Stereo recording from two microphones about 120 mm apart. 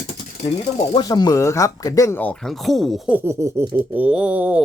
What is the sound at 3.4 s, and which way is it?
Speech, 20° right (ahead or behind).